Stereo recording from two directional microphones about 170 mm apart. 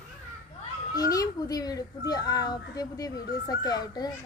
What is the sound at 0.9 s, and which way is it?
A child's voice, 20° left (ahead or behind).